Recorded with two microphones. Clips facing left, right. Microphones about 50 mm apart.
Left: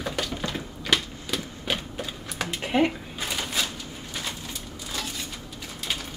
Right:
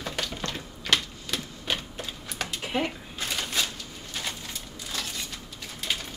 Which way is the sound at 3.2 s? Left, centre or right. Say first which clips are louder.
Even; centre.